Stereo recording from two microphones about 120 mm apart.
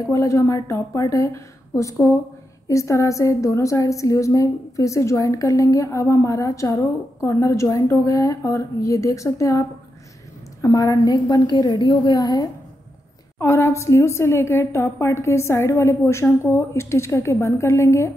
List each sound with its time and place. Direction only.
0.0 s a woman's voice: 25° left (ahead or behind)